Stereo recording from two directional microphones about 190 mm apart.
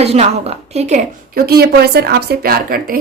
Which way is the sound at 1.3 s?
55° right (ahead or behind).